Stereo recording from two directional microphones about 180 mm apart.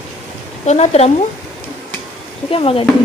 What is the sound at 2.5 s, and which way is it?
Speech, 30° left (ahead or behind).